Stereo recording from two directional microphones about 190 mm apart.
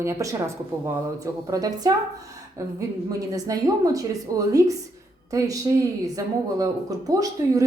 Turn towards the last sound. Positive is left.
turn(degrees=-20)  # may be behind; listen again after turning